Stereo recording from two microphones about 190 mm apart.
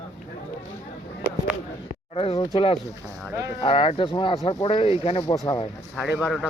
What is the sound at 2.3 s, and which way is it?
A man's voice, 25° left (ahead or behind).